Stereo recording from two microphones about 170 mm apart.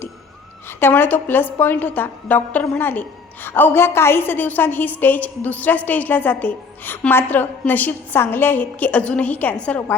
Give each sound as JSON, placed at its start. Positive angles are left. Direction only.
{"t": 0.8, "sound": "a woman's voice", "side_deg": 10}